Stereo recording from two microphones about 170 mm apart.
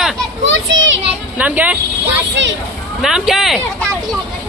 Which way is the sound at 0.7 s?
90° right.